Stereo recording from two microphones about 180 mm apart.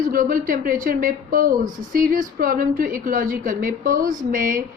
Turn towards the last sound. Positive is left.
turn(degrees=-50)  # may be behind; listen again after turning